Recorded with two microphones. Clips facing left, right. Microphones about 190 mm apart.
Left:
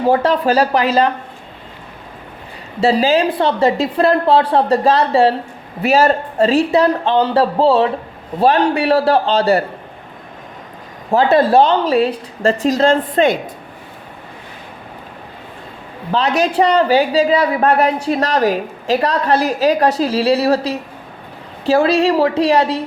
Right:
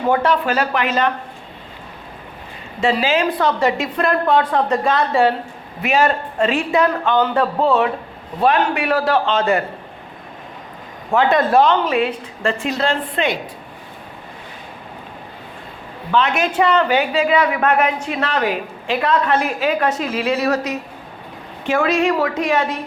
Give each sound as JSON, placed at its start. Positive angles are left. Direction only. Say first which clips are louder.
{"t": 0.0, "sound": "a man's voice", "louder": "left 3 dB", "side_deg": 35}
{"t": 2.8, "sound": "a man's voice", "louder": "left 4 dB", "side_deg": 35}
{"t": 11.1, "sound": "a man's voice", "louder": "left 3 dB", "side_deg": 35}
{"t": 16.1, "sound": "a man's voice", "louder": "left 2 dB", "side_deg": 35}